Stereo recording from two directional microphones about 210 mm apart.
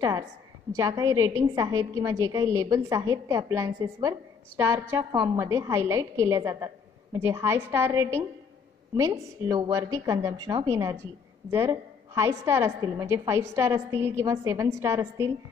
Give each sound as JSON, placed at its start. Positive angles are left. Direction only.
{"t": 0.7, "sound": "a woman's voice", "side_deg": -15}